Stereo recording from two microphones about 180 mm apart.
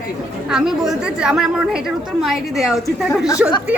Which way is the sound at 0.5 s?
5° right (ahead or behind).